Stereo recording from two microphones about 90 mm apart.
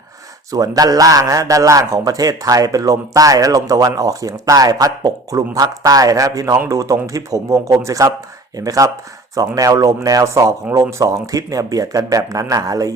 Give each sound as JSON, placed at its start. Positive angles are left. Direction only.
{"t": 0.5, "sound": "a man's voice", "side_deg": -45}